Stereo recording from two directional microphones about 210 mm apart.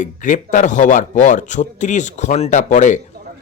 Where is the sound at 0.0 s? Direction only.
40° left (ahead or behind).